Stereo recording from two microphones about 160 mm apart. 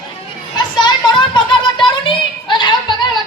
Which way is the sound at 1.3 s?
30° left (ahead or behind).